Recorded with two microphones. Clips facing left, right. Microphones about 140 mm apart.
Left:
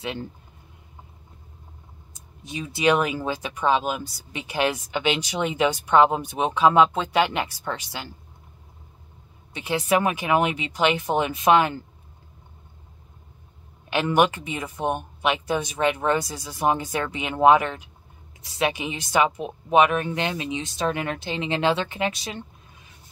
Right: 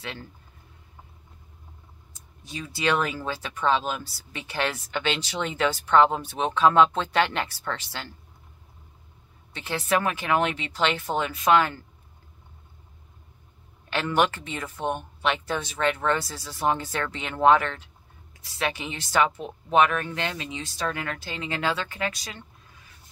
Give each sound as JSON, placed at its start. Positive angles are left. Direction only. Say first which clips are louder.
{"t": 0.0, "sound": "speech", "louder": "left 7 dB", "side_deg": 20}
{"t": 2.4, "sound": "speech", "louder": "left 5 dB", "side_deg": 20}
{"t": 9.5, "sound": "speech", "louder": "left 3 dB", "side_deg": 15}
{"t": 13.8, "sound": "a woman's voice", "louder": "left 3 dB", "side_deg": 15}